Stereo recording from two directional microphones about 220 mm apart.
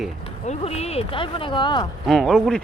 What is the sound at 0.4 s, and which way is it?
Speech, 30° left (ahead or behind).